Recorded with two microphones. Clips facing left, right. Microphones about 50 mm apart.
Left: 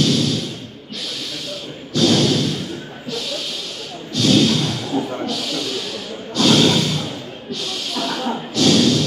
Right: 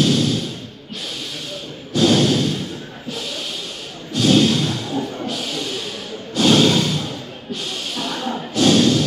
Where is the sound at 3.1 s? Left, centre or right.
Right.